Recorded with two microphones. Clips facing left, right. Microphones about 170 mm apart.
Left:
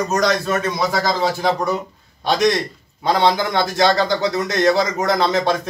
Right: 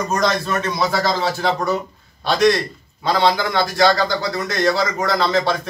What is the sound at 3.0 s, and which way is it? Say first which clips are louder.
A man's voice: left 1 dB; 20° left (ahead or behind).